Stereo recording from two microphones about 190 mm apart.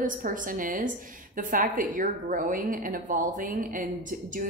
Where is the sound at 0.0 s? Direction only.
45° right (ahead or behind).